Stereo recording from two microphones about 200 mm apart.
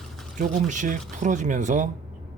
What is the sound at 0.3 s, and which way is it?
Speech, 40° right (ahead or behind).